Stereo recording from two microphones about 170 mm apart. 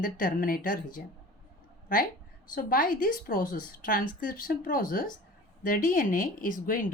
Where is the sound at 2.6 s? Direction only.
55° left (ahead or behind).